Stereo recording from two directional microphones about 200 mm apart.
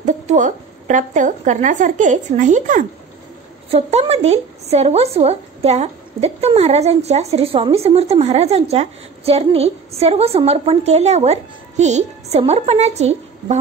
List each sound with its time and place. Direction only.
0.0 s speech: 40° right (ahead or behind)